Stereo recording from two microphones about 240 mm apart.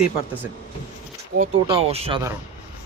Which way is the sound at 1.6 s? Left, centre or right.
Right.